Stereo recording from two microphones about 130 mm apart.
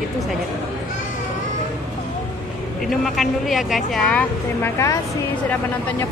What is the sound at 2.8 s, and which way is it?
Speech, centre (ahead or behind).